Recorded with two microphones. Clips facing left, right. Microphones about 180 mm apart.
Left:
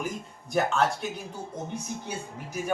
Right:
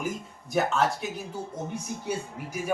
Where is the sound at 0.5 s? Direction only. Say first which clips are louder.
Even; centre (ahead or behind).